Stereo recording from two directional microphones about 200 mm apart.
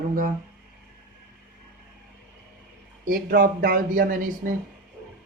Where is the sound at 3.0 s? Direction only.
45° right (ahead or behind).